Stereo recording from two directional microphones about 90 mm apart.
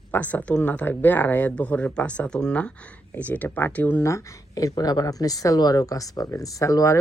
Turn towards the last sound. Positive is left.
turn(degrees=35)  # may be behind; listen again after turning